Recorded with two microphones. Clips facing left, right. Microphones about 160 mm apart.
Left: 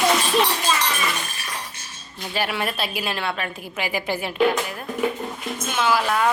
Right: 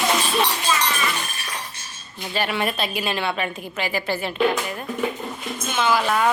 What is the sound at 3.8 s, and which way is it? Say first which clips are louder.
A woman's voice: even; 10° left (ahead or behind).